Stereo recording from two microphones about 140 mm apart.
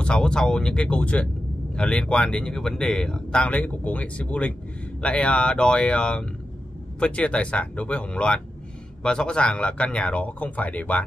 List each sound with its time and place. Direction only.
0.0 s speech: 5° left (ahead or behind)